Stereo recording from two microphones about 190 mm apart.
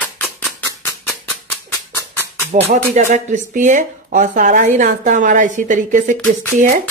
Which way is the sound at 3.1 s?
40° right (ahead or behind).